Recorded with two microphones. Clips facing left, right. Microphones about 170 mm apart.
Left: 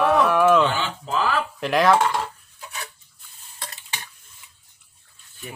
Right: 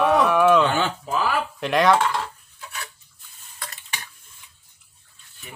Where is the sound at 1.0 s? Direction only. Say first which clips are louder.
Even; 10° right (ahead or behind).